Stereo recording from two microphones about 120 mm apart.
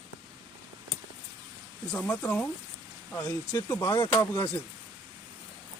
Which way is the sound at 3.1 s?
25° left (ahead or behind).